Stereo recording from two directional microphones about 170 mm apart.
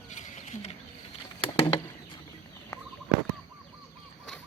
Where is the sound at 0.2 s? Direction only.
45° left (ahead or behind).